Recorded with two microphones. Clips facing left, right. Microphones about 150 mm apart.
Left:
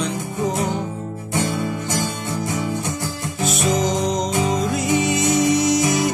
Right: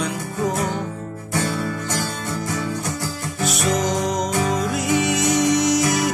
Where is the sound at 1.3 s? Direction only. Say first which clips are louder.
Left 1 dB; 15° left (ahead or behind).